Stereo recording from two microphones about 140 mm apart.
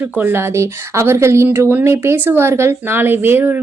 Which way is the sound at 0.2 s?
15° right (ahead or behind).